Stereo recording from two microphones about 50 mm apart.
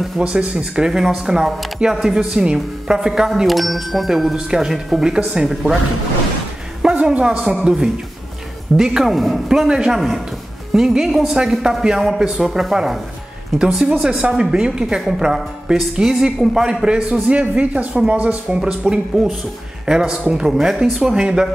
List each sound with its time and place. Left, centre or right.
0.2 s speech: right
0.6 s a woman's voice: centre
5.5 s speech: centre
6.8 s a sound: centre
8.7 s speech: centre
9.5 s a woman's voice: centre
18.6 s a woman's voice: centre
21.0 s a woman's voice: centre